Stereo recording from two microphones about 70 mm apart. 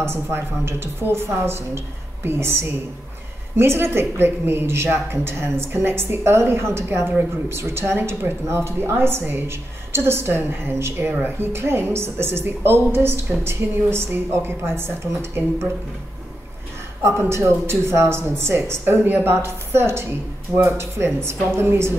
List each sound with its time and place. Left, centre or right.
0.0 s a woman's voice: right
17.0 s a woman's voice: right